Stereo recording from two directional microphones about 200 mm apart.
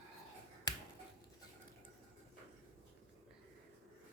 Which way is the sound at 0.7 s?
20° left (ahead or behind).